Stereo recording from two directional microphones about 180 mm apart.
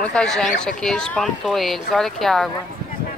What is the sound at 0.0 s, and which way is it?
Speech, 5° left (ahead or behind).